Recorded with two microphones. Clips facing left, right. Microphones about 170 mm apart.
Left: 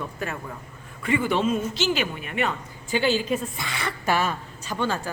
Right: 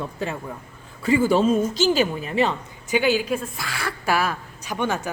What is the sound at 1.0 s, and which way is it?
A woman's voice, 35° right (ahead or behind).